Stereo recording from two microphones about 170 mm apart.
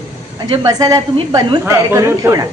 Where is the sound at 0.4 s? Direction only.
25° right (ahead or behind).